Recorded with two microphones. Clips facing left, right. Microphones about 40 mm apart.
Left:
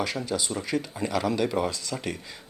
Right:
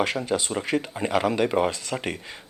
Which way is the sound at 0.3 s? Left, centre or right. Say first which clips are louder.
Right 4 dB; right.